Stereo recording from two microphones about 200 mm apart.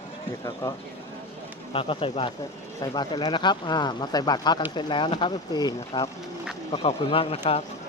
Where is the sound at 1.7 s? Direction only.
25° left (ahead or behind).